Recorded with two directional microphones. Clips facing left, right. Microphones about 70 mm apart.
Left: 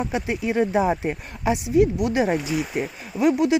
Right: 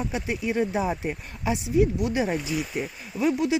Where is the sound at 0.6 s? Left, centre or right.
Left.